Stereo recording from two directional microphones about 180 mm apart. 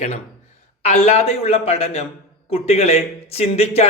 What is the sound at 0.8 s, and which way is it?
A man's voice, 35° left (ahead or behind).